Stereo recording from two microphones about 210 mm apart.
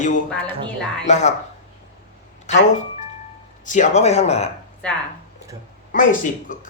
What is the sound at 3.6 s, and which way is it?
Speech, 35° left (ahead or behind).